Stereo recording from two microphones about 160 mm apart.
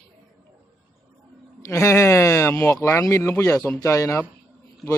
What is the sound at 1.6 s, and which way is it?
Speech, 15° left (ahead or behind).